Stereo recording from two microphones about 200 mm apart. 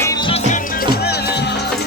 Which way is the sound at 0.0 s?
20° left (ahead or behind).